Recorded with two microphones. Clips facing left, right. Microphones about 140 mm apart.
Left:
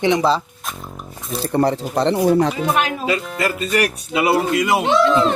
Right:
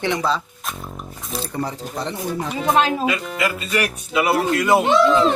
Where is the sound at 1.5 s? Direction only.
70° left (ahead or behind).